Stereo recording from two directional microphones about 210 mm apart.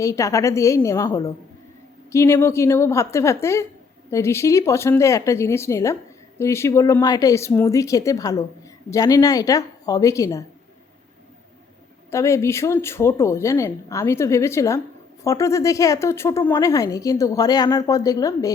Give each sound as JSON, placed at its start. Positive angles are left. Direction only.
{"t": 0.0, "sound": "speech", "side_deg": 15}
{"t": 12.1, "sound": "speech", "side_deg": 15}